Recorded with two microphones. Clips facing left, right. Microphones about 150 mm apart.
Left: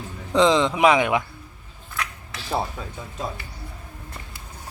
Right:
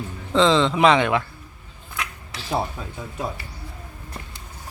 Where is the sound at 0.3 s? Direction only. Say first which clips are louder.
Even; 15° left (ahead or behind).